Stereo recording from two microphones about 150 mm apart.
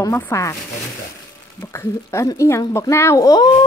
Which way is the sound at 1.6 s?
15° left (ahead or behind).